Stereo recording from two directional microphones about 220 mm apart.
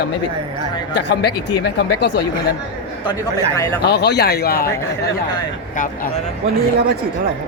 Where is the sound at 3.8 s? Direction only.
50° left (ahead or behind).